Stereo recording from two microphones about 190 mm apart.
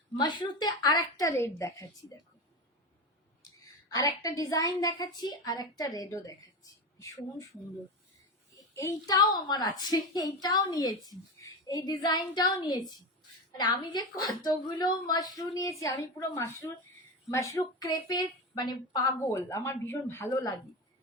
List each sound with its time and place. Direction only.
0.2 s a woman's voice: 25° left (ahead or behind)
3.8 s a woman's voice: 20° left (ahead or behind)
8.8 s a woman's voice: 20° left (ahead or behind)